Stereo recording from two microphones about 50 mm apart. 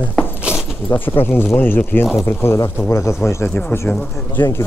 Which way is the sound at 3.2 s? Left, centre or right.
Left.